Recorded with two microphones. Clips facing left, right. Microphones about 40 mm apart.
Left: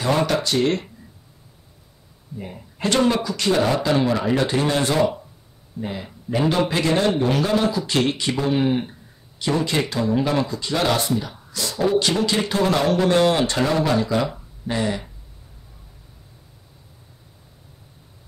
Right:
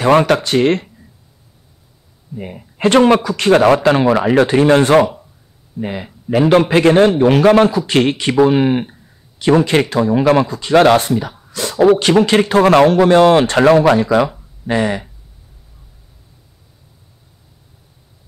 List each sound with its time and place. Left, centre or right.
0.0 s speech: right
2.3 s speech: right
3.6 s speech: right
4.1 s speech: right
14.1 s speech: right
14.7 s speech: right